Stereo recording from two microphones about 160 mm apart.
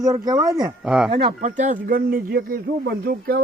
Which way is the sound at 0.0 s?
25° right (ahead or behind).